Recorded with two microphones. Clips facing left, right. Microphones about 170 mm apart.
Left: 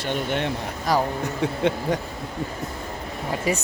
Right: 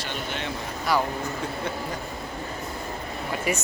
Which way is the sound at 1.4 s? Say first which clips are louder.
Left 7 dB; 80° left.